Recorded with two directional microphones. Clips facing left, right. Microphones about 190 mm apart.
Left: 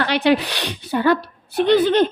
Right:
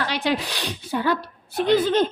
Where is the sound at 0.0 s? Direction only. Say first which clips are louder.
Left 7 dB; 70° left (ahead or behind).